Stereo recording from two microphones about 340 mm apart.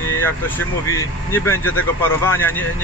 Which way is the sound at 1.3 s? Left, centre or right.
Centre.